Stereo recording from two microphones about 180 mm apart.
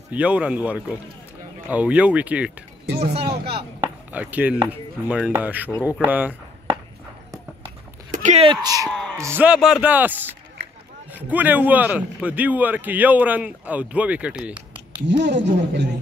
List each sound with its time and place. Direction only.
0.1 s speech: 5° right (ahead or behind)
2.9 s speech: 65° right (ahead or behind)
3.8 s chop: 10° right (ahead or behind)
4.6 s speech: 5° right (ahead or behind)
5.7 s speech: 15° left (ahead or behind)
6.0 s a sound: 10° right (ahead or behind)
8.1 s a sound: 40° right (ahead or behind)
8.5 s speech: 20° right (ahead or behind)
8.9 s a sound: 5° left (ahead or behind)
9.2 s speech: 10° right (ahead or behind)
15.0 s speech: 70° right (ahead or behind)